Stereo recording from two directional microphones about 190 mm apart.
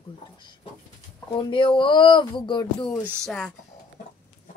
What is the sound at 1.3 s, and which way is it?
Speech, 25° left (ahead or behind).